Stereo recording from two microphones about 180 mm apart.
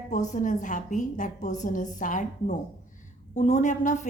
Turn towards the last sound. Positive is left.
turn(degrees=45)  # may be behind; listen again after turning